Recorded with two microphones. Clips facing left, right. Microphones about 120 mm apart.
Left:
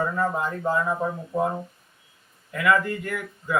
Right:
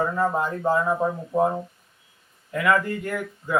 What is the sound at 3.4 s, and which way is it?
Speech, 5° right (ahead or behind).